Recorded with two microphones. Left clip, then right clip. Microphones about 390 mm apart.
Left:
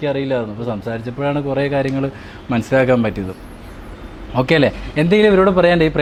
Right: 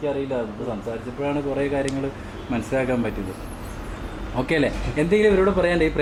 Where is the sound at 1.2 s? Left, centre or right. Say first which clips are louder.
Left 5 dB; left.